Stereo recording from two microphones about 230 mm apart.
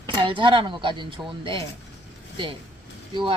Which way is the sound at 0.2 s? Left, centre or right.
Right.